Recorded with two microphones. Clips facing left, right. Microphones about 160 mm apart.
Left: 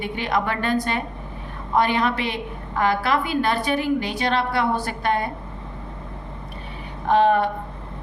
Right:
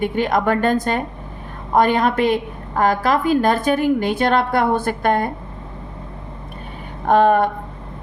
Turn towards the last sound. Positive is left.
turn(degrees=-50)  # may be behind; listen again after turning